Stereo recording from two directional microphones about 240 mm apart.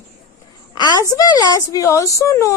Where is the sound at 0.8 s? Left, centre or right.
Centre.